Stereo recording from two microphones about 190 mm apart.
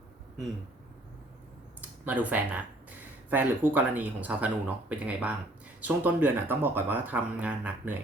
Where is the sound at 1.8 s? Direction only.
10° right (ahead or behind).